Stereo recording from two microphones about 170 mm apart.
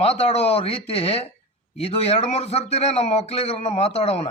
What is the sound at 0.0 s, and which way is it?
A man's voice, 40° left (ahead or behind).